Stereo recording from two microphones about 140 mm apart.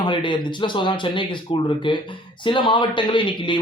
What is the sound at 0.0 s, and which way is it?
Speech, 35° left (ahead or behind).